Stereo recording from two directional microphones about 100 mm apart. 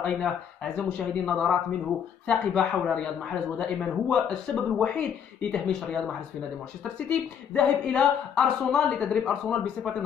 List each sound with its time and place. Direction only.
0.2 s speech: 5° left (ahead or behind)